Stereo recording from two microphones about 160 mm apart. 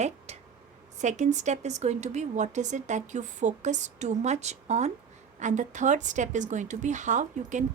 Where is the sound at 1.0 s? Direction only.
45° right (ahead or behind).